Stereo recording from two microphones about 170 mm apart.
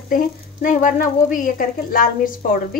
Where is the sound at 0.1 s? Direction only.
55° left (ahead or behind).